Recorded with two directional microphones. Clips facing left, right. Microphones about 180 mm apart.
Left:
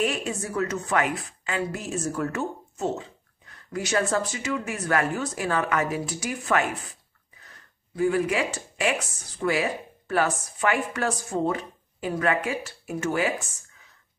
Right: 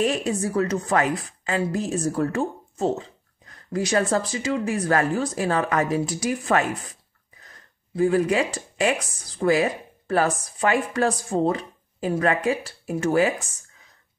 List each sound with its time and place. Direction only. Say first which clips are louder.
0.0 s a woman's voice: right 4 dB; 35° right (ahead or behind)
7.9 s a woman's voice: right 3 dB; 35° right (ahead or behind)